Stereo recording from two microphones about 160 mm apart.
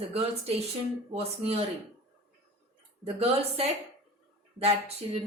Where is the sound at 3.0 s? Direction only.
40° right (ahead or behind).